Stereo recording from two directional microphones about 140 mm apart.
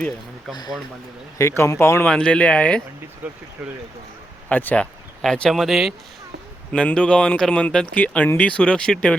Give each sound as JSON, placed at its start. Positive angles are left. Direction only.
{"t": 1.4, "sound": "speech", "side_deg": 20}
{"t": 2.0, "sound": "speech", "side_deg": 10}
{"t": 3.2, "sound": "speech", "side_deg": -10}
{"t": 4.4, "sound": "speech", "side_deg": 10}